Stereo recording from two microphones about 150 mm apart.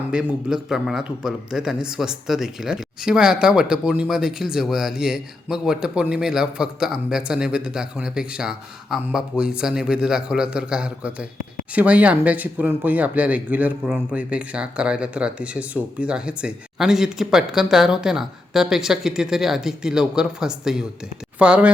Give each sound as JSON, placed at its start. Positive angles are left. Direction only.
{"t": 0.1, "sound": "speech", "side_deg": -5}